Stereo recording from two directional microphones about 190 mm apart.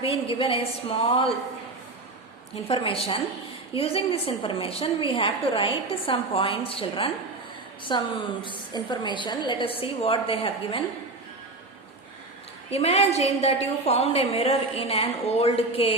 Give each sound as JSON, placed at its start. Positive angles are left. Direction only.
{"t": 0.0, "sound": "a woman's voice", "side_deg": 30}
{"t": 2.6, "sound": "a woman's voice", "side_deg": 30}
{"t": 12.7, "sound": "a woman's voice", "side_deg": 35}